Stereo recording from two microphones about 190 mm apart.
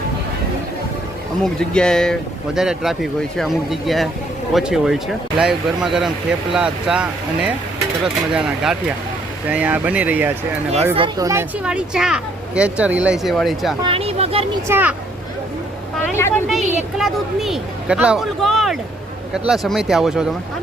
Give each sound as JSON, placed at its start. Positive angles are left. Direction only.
{"t": 1.5, "sound": "speech", "side_deg": 5}
{"t": 10.9, "sound": "speech", "side_deg": -25}
{"t": 11.3, "sound": "speech", "side_deg": -10}
{"t": 13.8, "sound": "speech", "side_deg": -30}
{"t": 14.7, "sound": "speech", "side_deg": -10}
{"t": 16.1, "sound": "speech", "side_deg": 15}
{"t": 16.5, "sound": "speech", "side_deg": 0}